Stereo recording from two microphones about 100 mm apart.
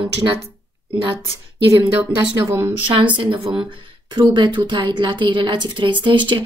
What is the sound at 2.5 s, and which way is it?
Speech, 25° right (ahead or behind).